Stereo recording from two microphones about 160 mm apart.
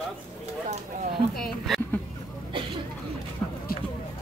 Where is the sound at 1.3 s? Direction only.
Centre (ahead or behind).